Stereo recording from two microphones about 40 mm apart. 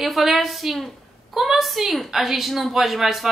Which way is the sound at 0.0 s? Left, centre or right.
Centre.